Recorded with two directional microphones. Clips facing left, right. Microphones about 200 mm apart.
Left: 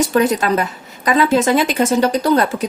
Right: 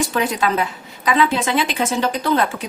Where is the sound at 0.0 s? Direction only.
45° left (ahead or behind).